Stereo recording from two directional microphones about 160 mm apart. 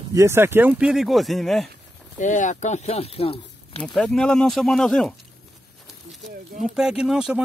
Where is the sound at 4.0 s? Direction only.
5° left (ahead or behind).